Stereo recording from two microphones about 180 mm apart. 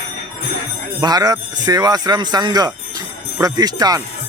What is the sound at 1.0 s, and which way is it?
Speech, 20° right (ahead or behind).